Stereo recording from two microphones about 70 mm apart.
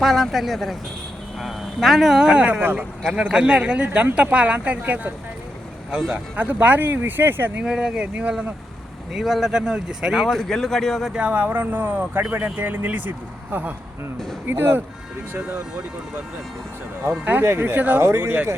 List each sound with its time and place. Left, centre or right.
0.0 s speech: centre; by 2.8 s right
3.0 s speech: centre; by 7.5 s right
7.6 s speech: centre
9.1 s speech: centre
11.1 s speech: right
17.0 s speech: right